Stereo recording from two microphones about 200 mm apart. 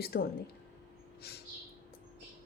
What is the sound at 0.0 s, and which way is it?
Speech, 50° left (ahead or behind).